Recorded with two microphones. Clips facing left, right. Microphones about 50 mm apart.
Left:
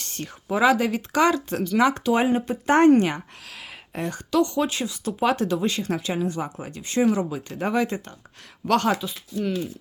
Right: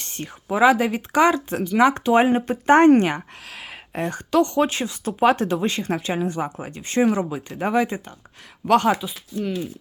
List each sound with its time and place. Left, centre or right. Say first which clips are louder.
0.0 s speech: right 1 dB; right
1.8 s a woman's voice: right 4 dB; right; by 9.6 s centre